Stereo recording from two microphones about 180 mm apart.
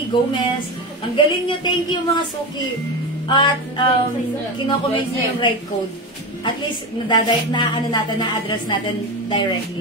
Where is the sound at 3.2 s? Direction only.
25° left (ahead or behind).